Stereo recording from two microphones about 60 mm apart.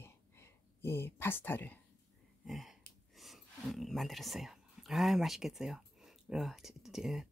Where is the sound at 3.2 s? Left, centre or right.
Centre.